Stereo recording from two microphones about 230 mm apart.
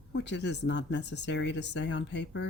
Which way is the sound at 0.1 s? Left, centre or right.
Left.